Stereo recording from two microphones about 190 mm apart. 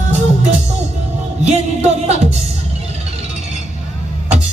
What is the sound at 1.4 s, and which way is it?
Music, 35° right (ahead or behind).